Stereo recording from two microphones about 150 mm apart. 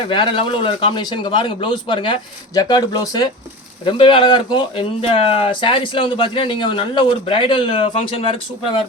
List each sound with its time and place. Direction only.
0.1 s speech: 35° left (ahead or behind)